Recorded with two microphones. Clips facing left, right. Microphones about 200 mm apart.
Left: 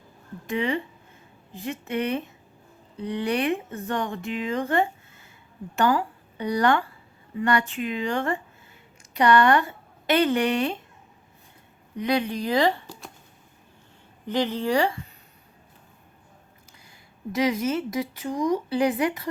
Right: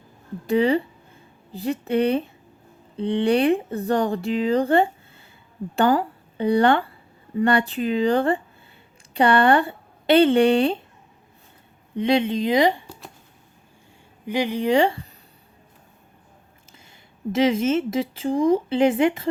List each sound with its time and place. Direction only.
0.4 s speech: 35° right (ahead or behind)
11.9 s speech: 25° right (ahead or behind)
14.3 s a woman's voice: 10° right (ahead or behind)
17.3 s speech: 25° right (ahead or behind)